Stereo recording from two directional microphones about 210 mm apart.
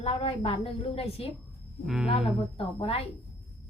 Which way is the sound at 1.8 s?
Centre (ahead or behind).